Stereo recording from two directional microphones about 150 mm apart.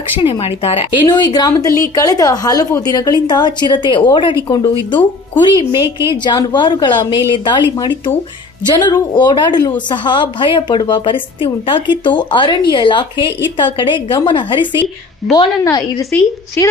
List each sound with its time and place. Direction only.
0.2 s a woman's voice: 40° left (ahead or behind)
16.1 s speech: 10° left (ahead or behind)